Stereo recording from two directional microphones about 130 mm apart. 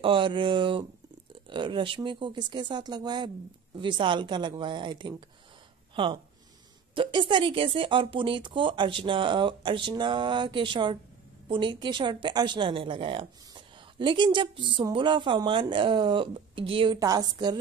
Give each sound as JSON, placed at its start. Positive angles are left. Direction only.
{"t": 0.0, "sound": "a woman's voice", "side_deg": -40}
{"t": 7.0, "sound": "a woman's voice", "side_deg": -40}
{"t": 16.9, "sound": "a woman's voice", "side_deg": -30}